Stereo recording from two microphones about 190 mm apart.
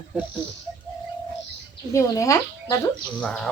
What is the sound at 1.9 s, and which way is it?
Speech, 15° left (ahead or behind).